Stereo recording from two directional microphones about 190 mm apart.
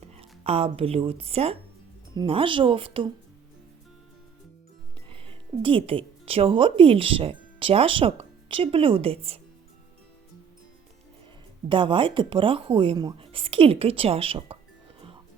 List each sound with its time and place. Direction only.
0.2 s speech: 30° right (ahead or behind)
5.1 s speech: 30° right (ahead or behind)
11.7 s speech: 25° right (ahead or behind)